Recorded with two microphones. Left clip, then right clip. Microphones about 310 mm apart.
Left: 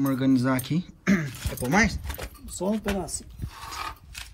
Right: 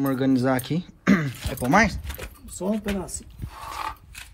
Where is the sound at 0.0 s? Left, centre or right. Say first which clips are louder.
Right 2 dB; centre.